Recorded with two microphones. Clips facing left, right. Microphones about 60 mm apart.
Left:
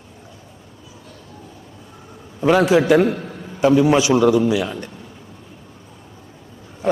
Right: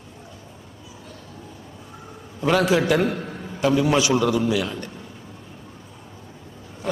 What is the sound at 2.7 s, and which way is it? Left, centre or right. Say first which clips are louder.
A man's voice: left 5 dB; centre.